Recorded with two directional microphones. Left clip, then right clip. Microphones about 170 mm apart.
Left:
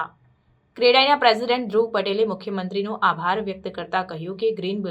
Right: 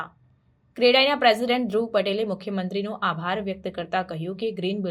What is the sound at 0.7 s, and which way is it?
A woman's voice, 35° right (ahead or behind).